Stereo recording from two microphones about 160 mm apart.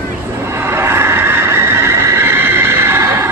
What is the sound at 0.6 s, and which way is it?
Neigh, 15° right (ahead or behind).